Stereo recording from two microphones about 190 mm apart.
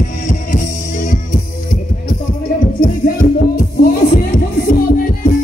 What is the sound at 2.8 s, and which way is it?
Music, 50° left (ahead or behind).